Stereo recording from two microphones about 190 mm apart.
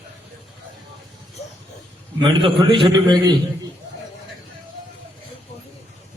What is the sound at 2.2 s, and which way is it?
A man's voice, 25° right (ahead or behind).